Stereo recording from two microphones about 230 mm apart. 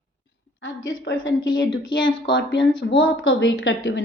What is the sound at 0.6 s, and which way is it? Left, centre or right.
Speech, left.